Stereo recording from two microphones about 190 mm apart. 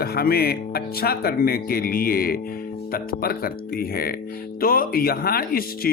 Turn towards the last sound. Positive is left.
turn(degrees=50)  # may be behind; listen again after turning